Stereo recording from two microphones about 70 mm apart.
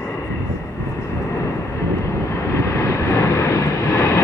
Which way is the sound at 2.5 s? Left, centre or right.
Left.